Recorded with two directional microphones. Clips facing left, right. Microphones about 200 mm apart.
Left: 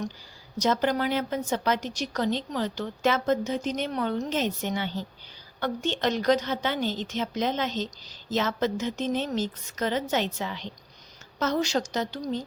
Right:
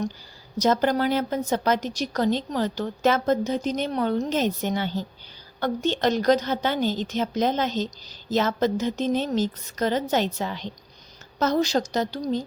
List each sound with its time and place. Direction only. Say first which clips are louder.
0.6 s a woman's voice: right 3 dB; 40° right (ahead or behind)